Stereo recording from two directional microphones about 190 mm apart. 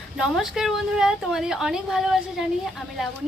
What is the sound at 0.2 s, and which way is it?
A woman's voice, centre (ahead or behind).